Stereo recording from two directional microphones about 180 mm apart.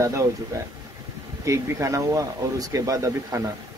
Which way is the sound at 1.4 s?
15° right (ahead or behind).